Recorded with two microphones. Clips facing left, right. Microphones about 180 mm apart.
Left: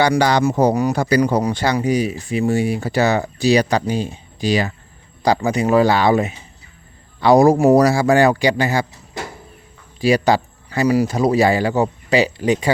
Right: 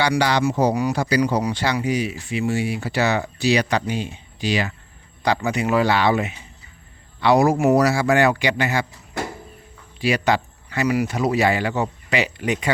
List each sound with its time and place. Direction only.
0.0 s speech: 45° left (ahead or behind)
10.0 s speech: 35° left (ahead or behind)